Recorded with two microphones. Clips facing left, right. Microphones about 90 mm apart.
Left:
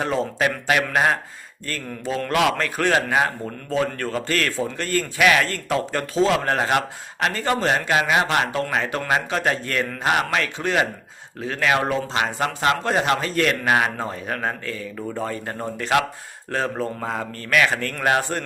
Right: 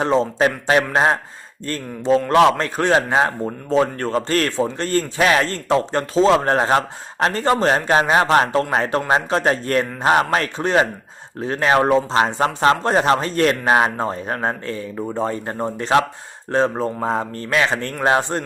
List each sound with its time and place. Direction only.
0.0 s a man's voice: 30° right (ahead or behind)